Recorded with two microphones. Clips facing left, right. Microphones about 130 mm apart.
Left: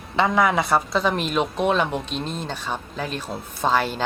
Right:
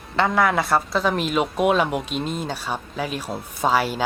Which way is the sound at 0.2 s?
Centre (ahead or behind).